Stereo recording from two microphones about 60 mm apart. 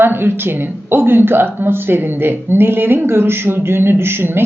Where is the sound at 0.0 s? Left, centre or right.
Right.